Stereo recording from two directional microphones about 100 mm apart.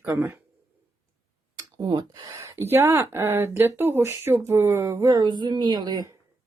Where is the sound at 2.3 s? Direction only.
25° right (ahead or behind); by 6.1 s 45° right (ahead or behind).